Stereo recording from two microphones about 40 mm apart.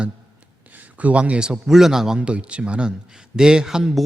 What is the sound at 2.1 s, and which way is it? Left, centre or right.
A man's voice, right.